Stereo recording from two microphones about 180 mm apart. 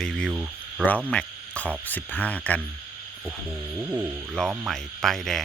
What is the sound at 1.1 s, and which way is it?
Insect, 5° left (ahead or behind).